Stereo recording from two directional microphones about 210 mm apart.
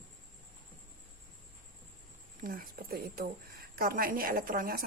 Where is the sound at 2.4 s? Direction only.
40° right (ahead or behind).